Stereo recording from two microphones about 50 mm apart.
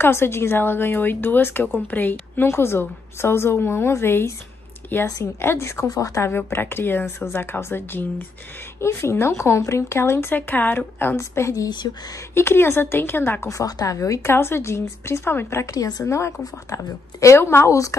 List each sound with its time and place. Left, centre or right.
0.0 s a woman's voice: left
2.4 s a woman's voice: left
5.4 s a woman's voice: left
7.5 s speech: left
8.8 s speech: left
10.3 s speech: left
11.1 s speech: left
12.4 s a woman's voice: left
13.5 s a woman's voice: left
14.3 s a woman's voice: left
16.1 s a woman's voice: left
17.4 s a woman's voice: left
17.6 s a woman's voice: left